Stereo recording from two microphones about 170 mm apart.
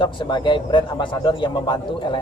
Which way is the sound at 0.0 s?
25° left (ahead or behind).